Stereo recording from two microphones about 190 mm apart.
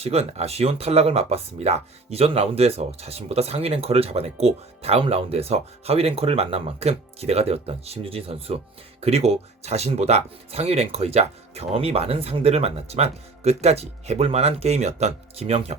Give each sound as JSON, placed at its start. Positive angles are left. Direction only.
{"t": 0.0, "sound": "speech", "side_deg": -35}